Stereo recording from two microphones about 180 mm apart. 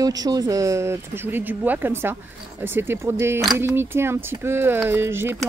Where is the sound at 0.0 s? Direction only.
20° right (ahead or behind).